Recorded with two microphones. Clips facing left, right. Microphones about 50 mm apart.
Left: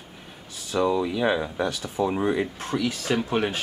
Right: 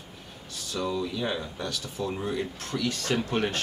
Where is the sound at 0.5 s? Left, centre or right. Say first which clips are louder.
Left 7 dB; centre.